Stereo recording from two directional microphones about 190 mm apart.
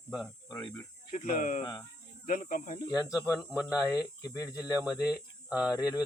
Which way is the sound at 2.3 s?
45° left (ahead or behind).